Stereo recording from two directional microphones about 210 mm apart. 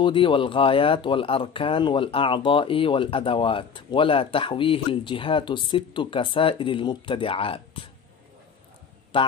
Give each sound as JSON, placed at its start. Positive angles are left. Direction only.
{"t": 0.0, "sound": "speech", "side_deg": 25}
{"t": 9.1, "sound": "speech", "side_deg": 25}